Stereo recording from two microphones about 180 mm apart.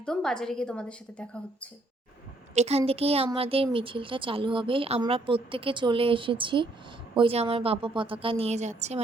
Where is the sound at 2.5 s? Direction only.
35° right (ahead or behind).